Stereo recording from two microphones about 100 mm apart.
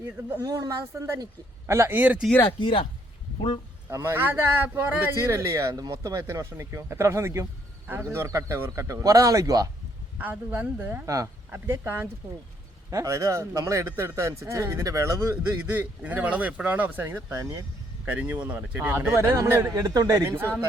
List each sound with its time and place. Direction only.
0.0 s speech: 30° right (ahead or behind)
2.6 s speech: 55° left (ahead or behind)
3.8 s speech: 25° right (ahead or behind)
10.2 s speech: 15° right (ahead or behind)
11.0 s speech: 35° right (ahead or behind)
11.5 s speech: 20° right (ahead or behind)
15.7 s speech: 15° right (ahead or behind); by 17.7 s 30° right (ahead or behind)
18.0 s speech: 15° right (ahead or behind); by 20.3 s 35° right (ahead or behind)